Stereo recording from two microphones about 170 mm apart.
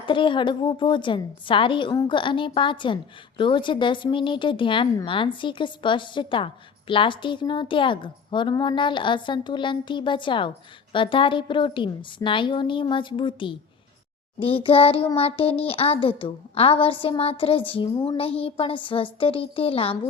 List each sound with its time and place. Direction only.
0.0 s a woman's voice: 30° left (ahead or behind)